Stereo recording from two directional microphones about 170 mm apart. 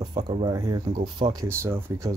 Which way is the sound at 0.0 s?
25° right (ahead or behind).